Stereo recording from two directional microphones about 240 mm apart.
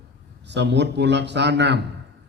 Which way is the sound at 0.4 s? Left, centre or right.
Right.